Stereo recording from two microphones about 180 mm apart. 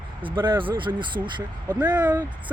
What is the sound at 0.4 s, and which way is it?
Speech, 25° right (ahead or behind).